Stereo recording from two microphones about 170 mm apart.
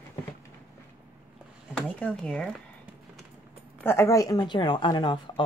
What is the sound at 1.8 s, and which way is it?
Speech, 5° left (ahead or behind).